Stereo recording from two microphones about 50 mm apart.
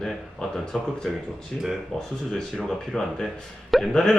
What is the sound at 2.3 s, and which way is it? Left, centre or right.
Speech, centre.